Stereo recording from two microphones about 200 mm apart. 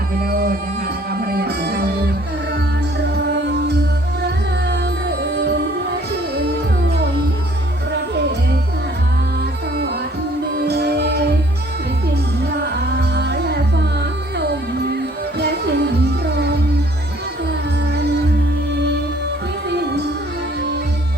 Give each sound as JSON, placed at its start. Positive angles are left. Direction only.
{"t": 0.3, "sound": "music", "side_deg": -50}
{"t": 9.7, "sound": "music", "side_deg": -55}
{"t": 13.0, "sound": "music", "side_deg": -55}
{"t": 19.7, "sound": "music", "side_deg": -55}